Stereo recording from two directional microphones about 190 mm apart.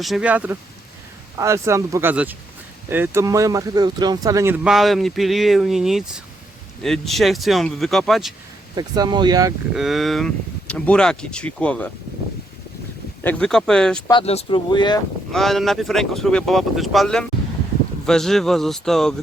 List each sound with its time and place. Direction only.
0.0 s speech: 5° right (ahead or behind)
8.7 s speech: 20° right (ahead or behind)
9.7 s speech: centre (ahead or behind)
13.2 s speech: 5° left (ahead or behind)
14.1 s speech: 30° left (ahead or behind)
15.3 s speech: centre (ahead or behind)